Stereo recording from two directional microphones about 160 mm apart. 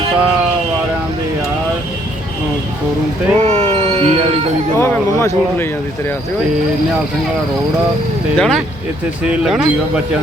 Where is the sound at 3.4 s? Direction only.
45° right (ahead or behind).